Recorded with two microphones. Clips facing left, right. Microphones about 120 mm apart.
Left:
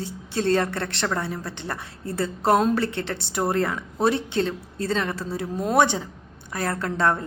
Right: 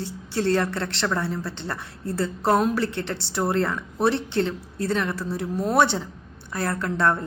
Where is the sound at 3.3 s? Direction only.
20° left (ahead or behind).